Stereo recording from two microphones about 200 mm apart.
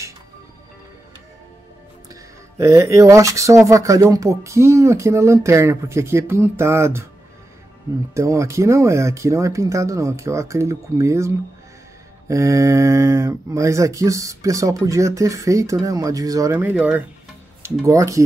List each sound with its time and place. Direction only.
2.5 s speech: 15° right (ahead or behind)
8.1 s speech: 15° right (ahead or behind)